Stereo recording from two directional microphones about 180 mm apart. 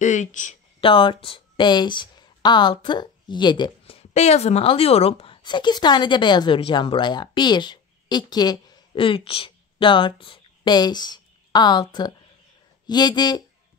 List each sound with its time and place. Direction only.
0.0 s speech: 40° left (ahead or behind)
0.7 s speech: 30° left (ahead or behind)